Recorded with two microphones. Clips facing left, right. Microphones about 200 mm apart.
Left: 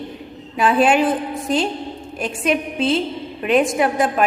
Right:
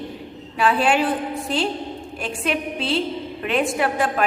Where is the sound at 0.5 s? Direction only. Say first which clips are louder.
Left 3 dB; 20° left (ahead or behind).